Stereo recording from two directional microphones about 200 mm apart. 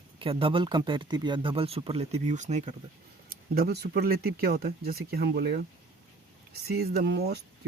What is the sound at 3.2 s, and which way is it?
Speech, 50° right (ahead or behind).